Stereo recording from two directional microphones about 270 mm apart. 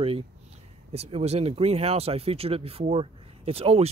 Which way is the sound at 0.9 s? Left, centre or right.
Right.